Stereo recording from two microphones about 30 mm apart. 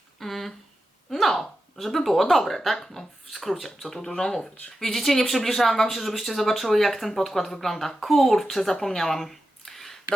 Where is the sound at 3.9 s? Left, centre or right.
Centre.